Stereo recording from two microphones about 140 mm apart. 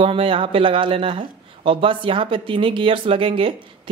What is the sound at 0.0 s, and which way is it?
Speech, 40° right (ahead or behind).